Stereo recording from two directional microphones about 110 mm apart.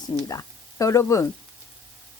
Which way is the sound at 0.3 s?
30° left (ahead or behind).